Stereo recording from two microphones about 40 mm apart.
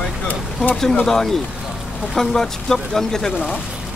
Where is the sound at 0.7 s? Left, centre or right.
Centre.